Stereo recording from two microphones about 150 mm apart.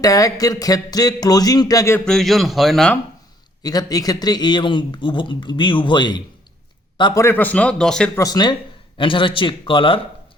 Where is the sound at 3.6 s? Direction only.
25° left (ahead or behind).